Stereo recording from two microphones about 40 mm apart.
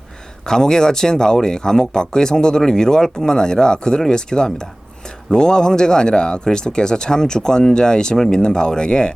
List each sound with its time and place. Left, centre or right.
0.4 s speech: centre